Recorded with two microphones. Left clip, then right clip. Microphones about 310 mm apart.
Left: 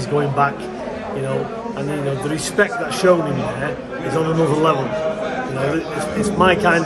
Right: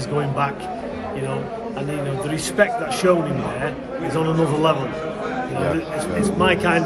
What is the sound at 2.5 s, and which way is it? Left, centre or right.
Speech, centre.